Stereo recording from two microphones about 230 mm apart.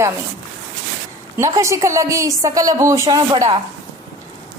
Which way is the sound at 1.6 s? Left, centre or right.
Centre.